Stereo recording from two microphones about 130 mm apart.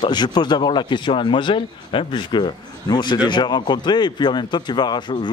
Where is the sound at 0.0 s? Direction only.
35° left (ahead or behind).